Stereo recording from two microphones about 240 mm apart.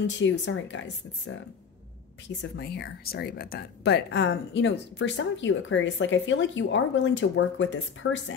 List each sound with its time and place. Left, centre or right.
0.0 s speech: left
2.5 s speech: left